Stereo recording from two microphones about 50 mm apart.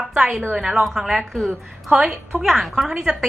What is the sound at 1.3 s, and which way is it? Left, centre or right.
Speech, centre.